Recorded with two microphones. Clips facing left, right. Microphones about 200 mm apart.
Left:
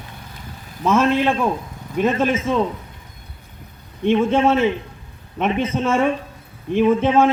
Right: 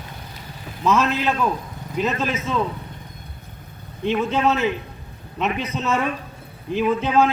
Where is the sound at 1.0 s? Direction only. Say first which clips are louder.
Left 4 dB; 25° left (ahead or behind).